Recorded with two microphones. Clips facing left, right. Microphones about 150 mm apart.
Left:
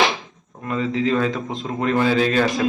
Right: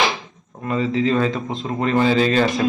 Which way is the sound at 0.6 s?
Centre (ahead or behind).